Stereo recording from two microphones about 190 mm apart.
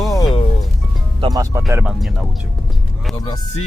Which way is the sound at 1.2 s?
20° right (ahead or behind).